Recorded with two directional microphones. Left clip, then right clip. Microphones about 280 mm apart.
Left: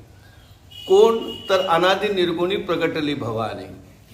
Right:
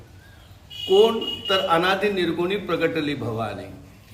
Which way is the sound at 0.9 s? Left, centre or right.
Centre.